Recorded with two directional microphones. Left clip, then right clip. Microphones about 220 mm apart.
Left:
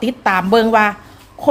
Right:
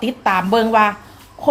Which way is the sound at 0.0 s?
25° left (ahead or behind).